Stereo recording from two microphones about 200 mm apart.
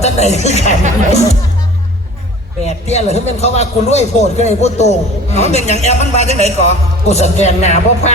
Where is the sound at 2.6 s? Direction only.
35° left (ahead or behind).